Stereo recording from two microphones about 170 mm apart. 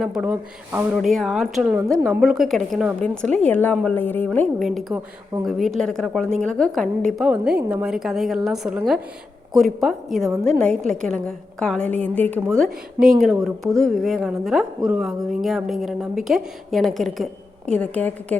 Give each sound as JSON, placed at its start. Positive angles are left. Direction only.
{"t": 0.0, "sound": "a woman's voice", "side_deg": -5}
{"t": 4.6, "sound": "a woman's voice", "side_deg": 0}
{"t": 4.9, "sound": "speech", "side_deg": -20}
{"t": 5.5, "sound": "a woman's voice", "side_deg": 0}
{"t": 9.8, "sound": "a woman's voice", "side_deg": 0}